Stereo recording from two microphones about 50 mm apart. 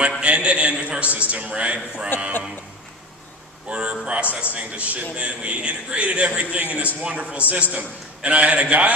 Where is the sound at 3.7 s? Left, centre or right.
Right.